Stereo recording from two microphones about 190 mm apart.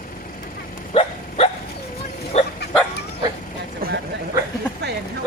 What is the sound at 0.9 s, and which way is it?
Dog, 35° left (ahead or behind).